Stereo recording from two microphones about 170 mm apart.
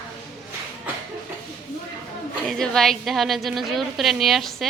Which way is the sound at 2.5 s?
Centre (ahead or behind).